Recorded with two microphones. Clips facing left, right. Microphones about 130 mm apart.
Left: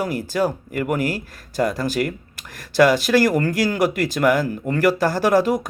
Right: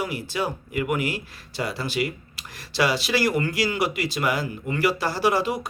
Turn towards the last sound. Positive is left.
turn(degrees=45)  # may be behind; listen again after turning